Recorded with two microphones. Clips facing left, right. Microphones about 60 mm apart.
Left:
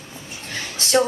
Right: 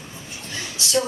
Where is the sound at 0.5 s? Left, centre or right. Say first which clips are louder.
Left 4 dB; left.